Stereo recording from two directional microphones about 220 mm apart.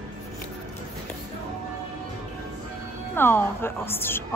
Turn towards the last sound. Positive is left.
turn(degrees=10)  # may be behind; listen again after turning